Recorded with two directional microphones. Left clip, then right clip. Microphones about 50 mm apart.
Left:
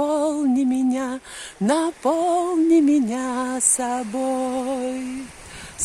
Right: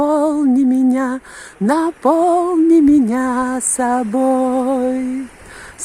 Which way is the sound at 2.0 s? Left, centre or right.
Right.